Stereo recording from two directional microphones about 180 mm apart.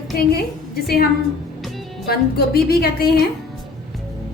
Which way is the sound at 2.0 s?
60° left (ahead or behind).